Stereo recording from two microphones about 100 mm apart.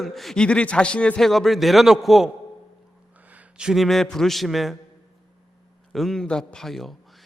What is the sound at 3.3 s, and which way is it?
A man's voice, 10° right (ahead or behind).